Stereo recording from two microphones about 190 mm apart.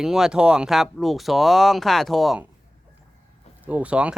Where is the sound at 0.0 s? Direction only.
Centre (ahead or behind).